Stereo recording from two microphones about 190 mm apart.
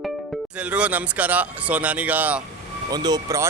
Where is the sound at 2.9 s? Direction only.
20° right (ahead or behind).